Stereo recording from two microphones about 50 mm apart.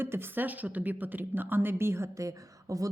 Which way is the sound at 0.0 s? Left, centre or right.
Right.